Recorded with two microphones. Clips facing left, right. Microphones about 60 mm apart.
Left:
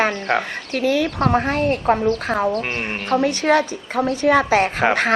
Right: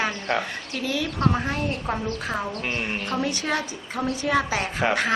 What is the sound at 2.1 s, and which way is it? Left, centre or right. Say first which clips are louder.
A woman's voice: left 9 dB; left.